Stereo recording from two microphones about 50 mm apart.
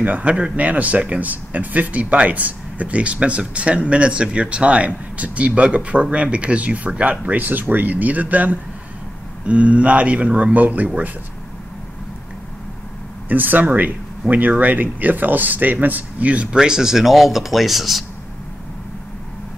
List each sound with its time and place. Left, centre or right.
0.0 s speech: right
9.5 s speech: right
13.3 s speech: right
16.5 s speech: centre